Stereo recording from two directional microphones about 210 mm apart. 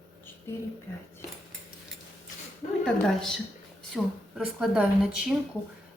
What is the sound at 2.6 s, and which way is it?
Speech, 35° left (ahead or behind).